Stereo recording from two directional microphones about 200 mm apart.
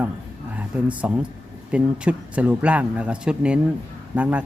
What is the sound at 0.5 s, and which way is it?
A man's voice, 5° right (ahead or behind).